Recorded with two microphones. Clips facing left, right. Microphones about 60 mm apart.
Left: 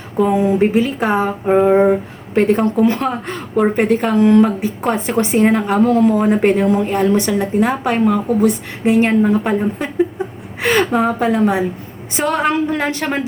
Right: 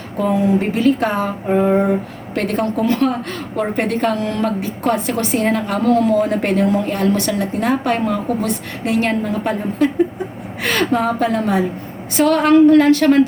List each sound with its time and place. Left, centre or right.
0.3 s a woman's voice: centre
10.9 s a woman's voice: centre